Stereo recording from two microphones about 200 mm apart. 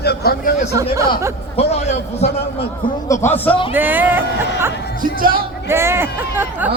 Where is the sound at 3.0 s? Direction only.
15° left (ahead or behind).